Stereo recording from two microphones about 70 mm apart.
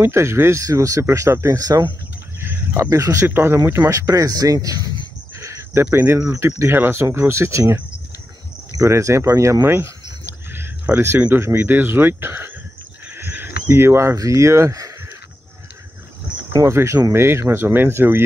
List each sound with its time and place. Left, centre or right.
0.0 s speech: right
1.6 s speech: right
2.4 s a sound: right
2.8 s speech: right
3.3 s speech: right
4.1 s speech: right
5.4 s cricket: right
6.1 s speech: right
8.7 s speech: right
10.5 s a sound: right
11.5 s speech: right
16.5 s speech: right